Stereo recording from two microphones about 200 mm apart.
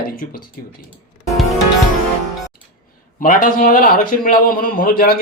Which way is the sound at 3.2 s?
45° left (ahead or behind).